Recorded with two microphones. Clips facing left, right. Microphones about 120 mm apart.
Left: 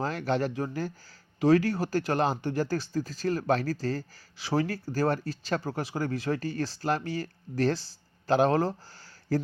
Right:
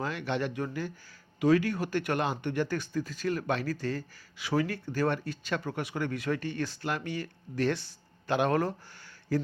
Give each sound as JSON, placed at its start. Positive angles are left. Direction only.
{"t": 0.0, "sound": "speech", "side_deg": 40}
{"t": 9.3, "sound": "speech", "side_deg": 40}